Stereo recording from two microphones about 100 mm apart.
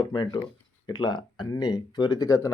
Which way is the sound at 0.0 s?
55° left (ahead or behind).